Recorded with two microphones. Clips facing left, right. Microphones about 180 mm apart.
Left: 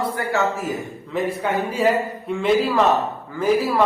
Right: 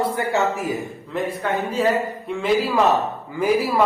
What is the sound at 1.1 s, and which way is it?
A man's voice, 5° left (ahead or behind).